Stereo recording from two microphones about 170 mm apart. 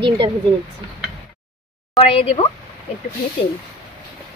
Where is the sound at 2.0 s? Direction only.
35° left (ahead or behind).